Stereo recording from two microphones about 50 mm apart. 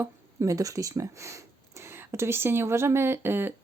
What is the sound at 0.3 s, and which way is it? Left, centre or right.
Speech, right.